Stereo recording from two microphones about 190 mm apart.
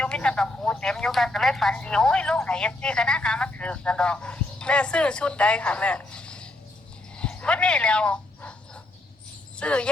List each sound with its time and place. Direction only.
0.0 s speech: 5° left (ahead or behind)
7.2 s a sound: 5° left (ahead or behind)
9.6 s speech: 5° left (ahead or behind)